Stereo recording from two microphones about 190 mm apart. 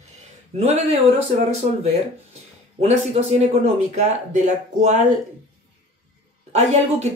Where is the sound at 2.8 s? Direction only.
35° right (ahead or behind).